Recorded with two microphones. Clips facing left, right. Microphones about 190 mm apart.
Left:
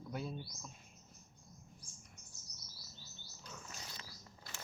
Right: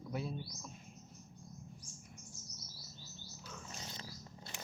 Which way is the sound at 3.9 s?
25° right (ahead or behind).